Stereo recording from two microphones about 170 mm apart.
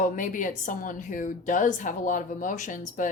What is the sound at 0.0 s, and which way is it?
A woman's voice, 50° left (ahead or behind).